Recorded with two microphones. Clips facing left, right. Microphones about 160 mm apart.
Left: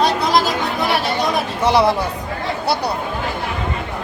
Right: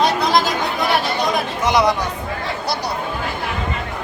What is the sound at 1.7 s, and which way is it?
Speech, 30° left (ahead or behind).